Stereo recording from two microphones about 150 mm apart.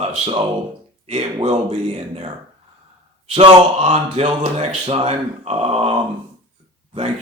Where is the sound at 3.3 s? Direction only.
45° right (ahead or behind).